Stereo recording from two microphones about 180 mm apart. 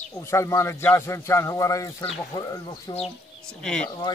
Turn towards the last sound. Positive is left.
turn(degrees=5)  # may be behind; listen again after turning